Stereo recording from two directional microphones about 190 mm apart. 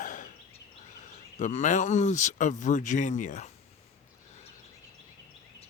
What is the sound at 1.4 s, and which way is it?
Speech, 40° left (ahead or behind).